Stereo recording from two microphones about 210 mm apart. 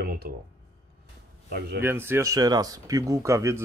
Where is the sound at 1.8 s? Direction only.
10° right (ahead or behind).